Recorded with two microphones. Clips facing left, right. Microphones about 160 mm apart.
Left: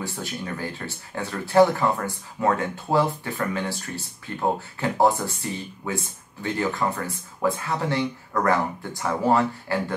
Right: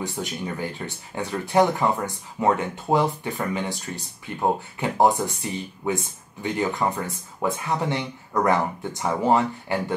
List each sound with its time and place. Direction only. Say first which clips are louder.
0.0 s speech: right 2 dB; 20° right (ahead or behind)